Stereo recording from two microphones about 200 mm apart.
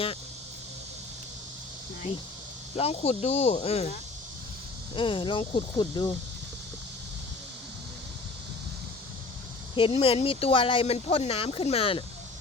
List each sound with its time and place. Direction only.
2.7 s speech: 30° left (ahead or behind)
4.9 s speech: 25° left (ahead or behind)
9.7 s speech: 25° left (ahead or behind)